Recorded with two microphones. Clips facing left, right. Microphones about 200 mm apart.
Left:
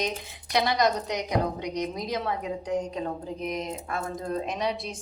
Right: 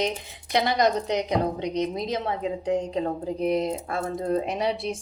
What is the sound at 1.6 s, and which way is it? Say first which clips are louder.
A woman's voice: right 4 dB; 25° right (ahead or behind).